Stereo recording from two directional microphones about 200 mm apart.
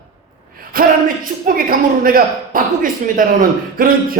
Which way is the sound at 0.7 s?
45° right (ahead or behind).